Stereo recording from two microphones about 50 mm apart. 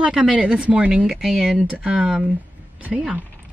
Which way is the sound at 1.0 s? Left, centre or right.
Centre.